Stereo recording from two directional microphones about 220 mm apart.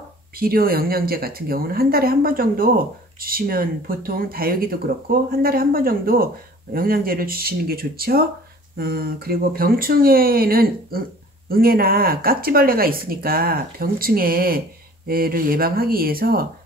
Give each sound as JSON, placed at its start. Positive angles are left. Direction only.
{"t": 0.4, "sound": "speech", "side_deg": -45}